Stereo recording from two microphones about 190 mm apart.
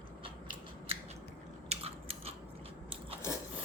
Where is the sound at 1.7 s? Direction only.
30° right (ahead or behind).